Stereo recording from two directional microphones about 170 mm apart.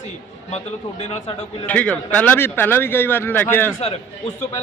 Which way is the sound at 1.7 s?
10° left (ahead or behind).